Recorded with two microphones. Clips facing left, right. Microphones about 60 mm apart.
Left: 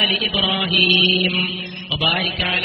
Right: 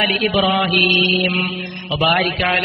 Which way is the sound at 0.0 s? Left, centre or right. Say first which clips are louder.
Right 4 dB; right.